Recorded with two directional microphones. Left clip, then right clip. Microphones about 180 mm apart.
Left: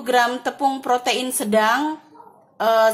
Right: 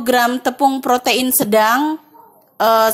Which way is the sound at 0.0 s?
40° right (ahead or behind).